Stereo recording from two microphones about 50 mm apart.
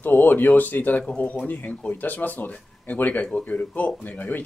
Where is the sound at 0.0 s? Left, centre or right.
Left.